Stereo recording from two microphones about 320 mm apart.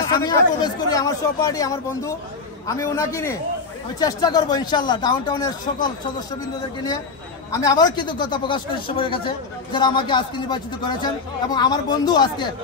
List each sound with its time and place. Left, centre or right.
0.1 s speech: centre
7.5 s speech: centre